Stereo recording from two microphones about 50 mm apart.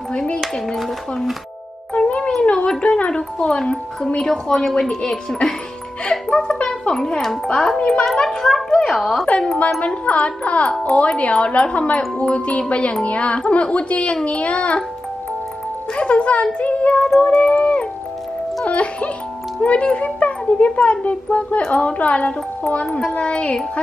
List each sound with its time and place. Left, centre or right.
0.4 s speech: centre
2.0 s music: left
2.4 s a sound: left
2.8 s a child's voice: left; by 9.3 s centre
9.8 s speech: left
16.0 s speech: left